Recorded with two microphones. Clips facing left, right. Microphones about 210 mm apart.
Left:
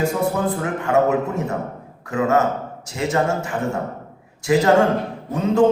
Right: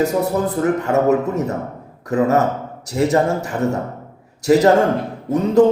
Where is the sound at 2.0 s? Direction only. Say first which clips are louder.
Right 3 dB; 35° right (ahead or behind).